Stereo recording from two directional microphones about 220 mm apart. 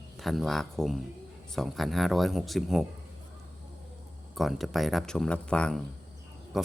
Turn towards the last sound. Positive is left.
turn(degrees=0)  # may be behind; listen again after turning